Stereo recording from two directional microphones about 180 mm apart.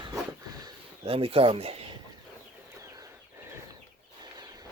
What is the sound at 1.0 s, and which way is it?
Speech, 30° right (ahead or behind).